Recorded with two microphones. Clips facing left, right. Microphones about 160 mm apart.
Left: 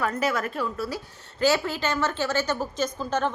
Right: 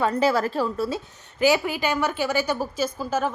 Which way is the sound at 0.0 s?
30° right (ahead or behind).